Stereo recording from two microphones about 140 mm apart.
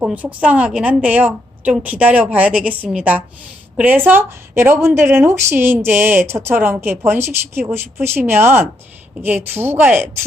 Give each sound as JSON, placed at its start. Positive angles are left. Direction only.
{"t": 0.0, "sound": "a woman's voice", "side_deg": -10}